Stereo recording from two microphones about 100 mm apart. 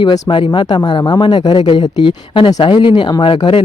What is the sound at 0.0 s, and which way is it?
Speech, 55° left (ahead or behind).